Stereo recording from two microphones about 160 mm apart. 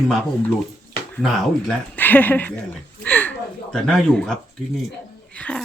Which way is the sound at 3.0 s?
10° left (ahead or behind).